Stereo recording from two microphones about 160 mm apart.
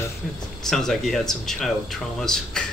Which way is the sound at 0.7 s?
Centre (ahead or behind).